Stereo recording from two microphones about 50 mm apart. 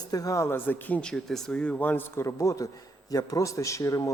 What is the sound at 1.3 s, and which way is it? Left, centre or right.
Speech, centre.